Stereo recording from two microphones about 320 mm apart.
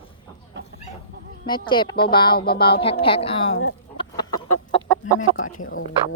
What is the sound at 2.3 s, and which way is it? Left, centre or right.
Speech, left.